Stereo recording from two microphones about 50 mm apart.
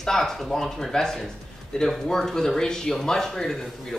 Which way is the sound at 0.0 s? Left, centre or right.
Centre.